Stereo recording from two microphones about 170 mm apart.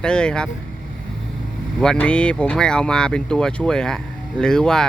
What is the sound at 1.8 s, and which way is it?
Speech, 5° left (ahead or behind).